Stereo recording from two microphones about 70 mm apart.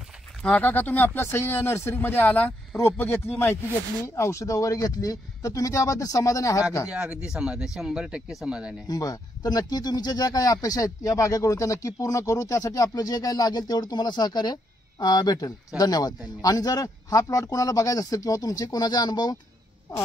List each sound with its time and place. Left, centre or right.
0.6 s speech: left
4.0 s speech: left
6.9 s speech: centre
8.8 s speech: left